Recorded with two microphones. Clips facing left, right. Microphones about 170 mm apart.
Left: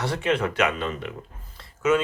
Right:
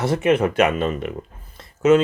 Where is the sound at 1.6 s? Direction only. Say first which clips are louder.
Right 7 dB; 25° right (ahead or behind).